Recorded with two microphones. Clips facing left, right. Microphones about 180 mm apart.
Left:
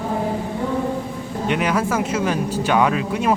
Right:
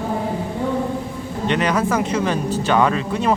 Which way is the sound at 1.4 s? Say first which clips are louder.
Right 1 dB; 10° left (ahead or behind).